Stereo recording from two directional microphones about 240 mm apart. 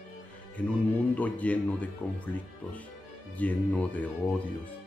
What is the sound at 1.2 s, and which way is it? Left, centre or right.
Speech, centre.